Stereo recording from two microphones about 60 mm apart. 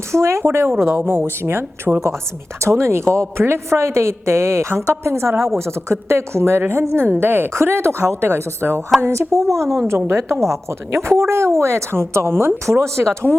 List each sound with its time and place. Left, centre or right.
0.1 s a woman's voice: right
9.3 s a woman's voice: right
10.1 s a woman's voice: right